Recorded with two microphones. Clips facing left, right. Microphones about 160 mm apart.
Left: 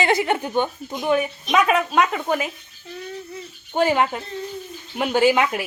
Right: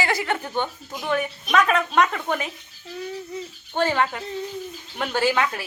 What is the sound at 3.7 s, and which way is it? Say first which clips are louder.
Speech: left 3 dB; 15° left (ahead or behind).